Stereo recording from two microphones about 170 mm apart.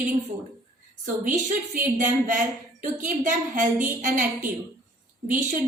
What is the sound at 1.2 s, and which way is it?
A woman's voice, 50° right (ahead or behind).